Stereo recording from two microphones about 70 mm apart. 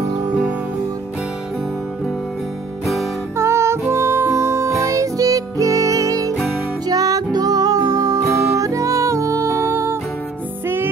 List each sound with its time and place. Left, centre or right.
3.3 s music: right